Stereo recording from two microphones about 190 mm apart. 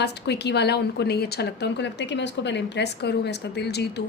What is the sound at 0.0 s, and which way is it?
A woman's voice, 60° left (ahead or behind).